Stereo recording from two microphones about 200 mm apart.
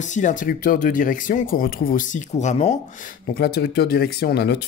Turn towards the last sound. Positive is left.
turn(degrees=55)  # may be behind; listen again after turning